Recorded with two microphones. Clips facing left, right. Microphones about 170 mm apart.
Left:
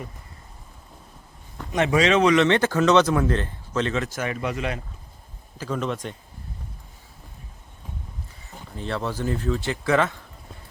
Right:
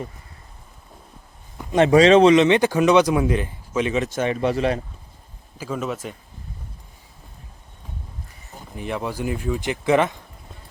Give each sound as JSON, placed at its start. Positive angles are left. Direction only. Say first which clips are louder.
{"t": 1.7, "sound": "speech", "louder": "right 7 dB", "side_deg": -35}
{"t": 2.3, "sound": "speech", "louder": "right 3 dB", "side_deg": -15}
{"t": 5.5, "sound": "speech", "louder": "even", "side_deg": -10}
{"t": 8.7, "sound": "speech", "louder": "right 1 dB", "side_deg": -15}